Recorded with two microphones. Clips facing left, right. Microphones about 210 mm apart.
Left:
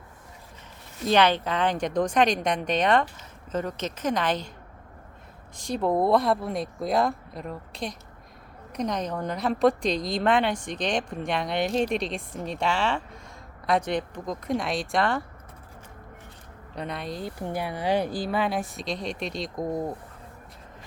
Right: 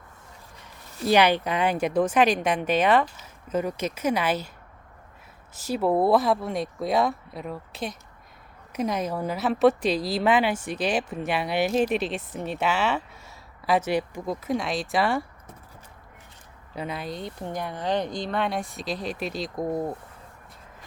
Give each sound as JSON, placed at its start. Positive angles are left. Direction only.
{"t": 1.0, "sound": "a woman's voice", "side_deg": -10}
{"t": 5.5, "sound": "a woman's voice", "side_deg": -5}
{"t": 16.7, "sound": "a woman's voice", "side_deg": -5}